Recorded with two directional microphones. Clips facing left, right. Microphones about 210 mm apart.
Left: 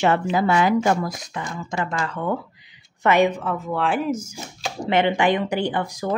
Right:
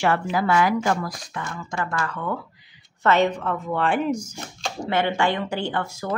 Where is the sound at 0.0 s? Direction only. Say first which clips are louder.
Left 3 dB; 20° left (ahead or behind); by 4.7 s centre (ahead or behind).